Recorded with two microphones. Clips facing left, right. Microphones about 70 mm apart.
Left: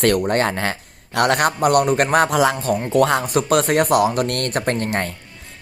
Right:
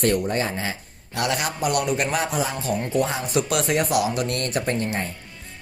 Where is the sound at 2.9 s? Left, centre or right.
Left.